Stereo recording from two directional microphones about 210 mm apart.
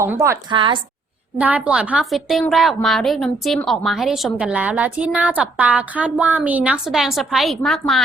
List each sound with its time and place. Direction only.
0.0 s a woman's voice: 15° right (ahead or behind)
0.5 s a woman's voice: 25° right (ahead or behind)
1.4 s a woman's voice: 5° right (ahead or behind)